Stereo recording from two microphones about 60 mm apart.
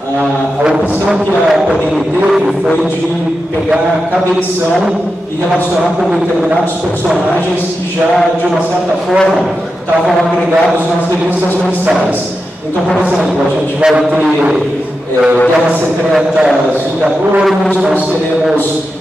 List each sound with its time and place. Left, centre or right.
0.7 s a man's voice: centre
13.7 s a man's voice: centre